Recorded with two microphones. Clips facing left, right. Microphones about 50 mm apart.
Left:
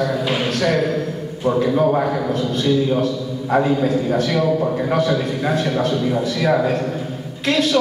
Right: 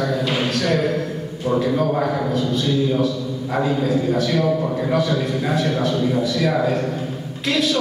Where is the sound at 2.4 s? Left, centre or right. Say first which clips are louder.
Left 3 dB; left.